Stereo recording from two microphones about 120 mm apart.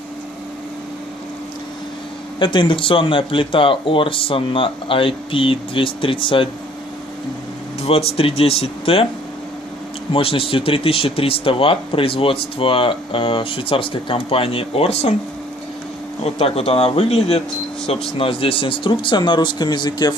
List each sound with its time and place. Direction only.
2.3 s speech: 40° left (ahead or behind)
7.8 s speech: 55° left (ahead or behind)
10.1 s speech: 50° left (ahead or behind)
16.2 s speech: 55° left (ahead or behind); by 20.2 s 35° left (ahead or behind)